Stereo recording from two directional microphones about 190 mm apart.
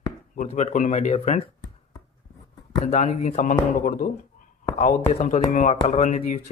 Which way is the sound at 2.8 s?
35° left (ahead or behind).